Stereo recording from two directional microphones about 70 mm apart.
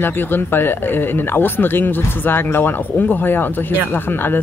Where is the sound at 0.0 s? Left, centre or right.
Left.